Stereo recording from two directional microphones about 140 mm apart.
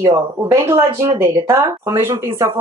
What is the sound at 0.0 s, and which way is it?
Speech, 20° right (ahead or behind).